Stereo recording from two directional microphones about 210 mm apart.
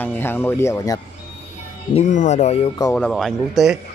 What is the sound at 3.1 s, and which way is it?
Speech, centre (ahead or behind).